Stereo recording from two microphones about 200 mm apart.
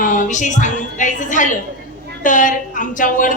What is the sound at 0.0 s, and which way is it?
A woman's voice, 40° left (ahead or behind).